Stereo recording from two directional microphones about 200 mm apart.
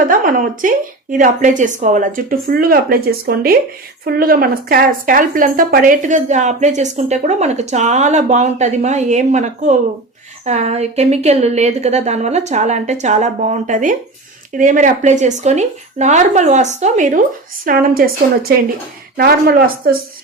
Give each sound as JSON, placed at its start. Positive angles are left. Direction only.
{"t": 0.0, "sound": "speech", "side_deg": -45}